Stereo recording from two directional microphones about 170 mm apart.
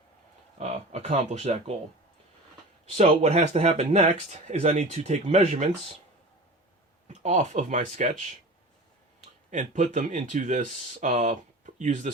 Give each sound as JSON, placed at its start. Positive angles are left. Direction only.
{"t": 0.6, "sound": "speech", "side_deg": -45}
{"t": 3.0, "sound": "speech", "side_deg": -35}
{"t": 7.1, "sound": "speech", "side_deg": -45}
{"t": 9.5, "sound": "speech", "side_deg": -50}